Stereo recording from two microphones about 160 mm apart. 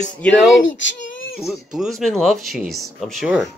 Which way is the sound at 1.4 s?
5° right (ahead or behind).